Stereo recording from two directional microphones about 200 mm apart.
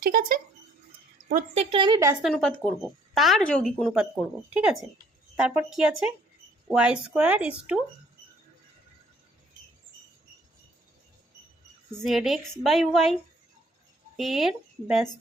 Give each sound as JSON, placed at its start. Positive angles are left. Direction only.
{"t": 0.0, "sound": "speech", "side_deg": -45}
{"t": 1.7, "sound": "a woman's voice", "side_deg": -20}
{"t": 2.2, "sound": "a woman's voice", "side_deg": 5}
{"t": 11.9, "sound": "a woman's voice", "side_deg": 0}
{"t": 14.2, "sound": "a woman's voice", "side_deg": 0}